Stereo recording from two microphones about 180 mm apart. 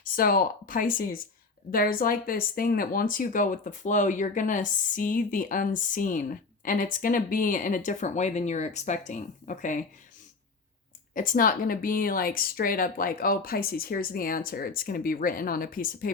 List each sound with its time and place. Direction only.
0.0 s speech: 55° left (ahead or behind)
11.1 s speech: 50° left (ahead or behind)